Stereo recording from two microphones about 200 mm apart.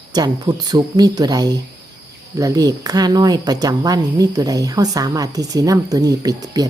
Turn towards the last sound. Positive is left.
turn(degrees=-20)  # may be behind; listen again after turning